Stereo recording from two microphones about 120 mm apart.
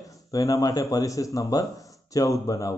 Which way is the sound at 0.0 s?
30° left (ahead or behind).